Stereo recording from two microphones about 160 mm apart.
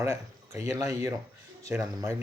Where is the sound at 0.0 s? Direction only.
15° right (ahead or behind).